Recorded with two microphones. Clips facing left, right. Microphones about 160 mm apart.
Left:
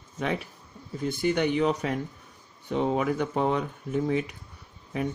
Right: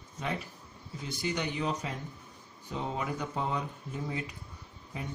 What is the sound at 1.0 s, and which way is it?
Speech, 55° left (ahead or behind).